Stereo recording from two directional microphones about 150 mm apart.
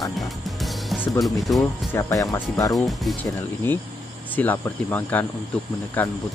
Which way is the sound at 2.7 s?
Centre (ahead or behind).